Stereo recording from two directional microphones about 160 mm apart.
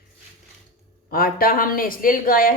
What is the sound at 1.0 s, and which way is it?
A woman's voice, 70° left (ahead or behind).